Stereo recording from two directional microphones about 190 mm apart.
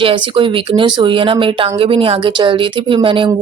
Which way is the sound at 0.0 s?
25° right (ahead or behind).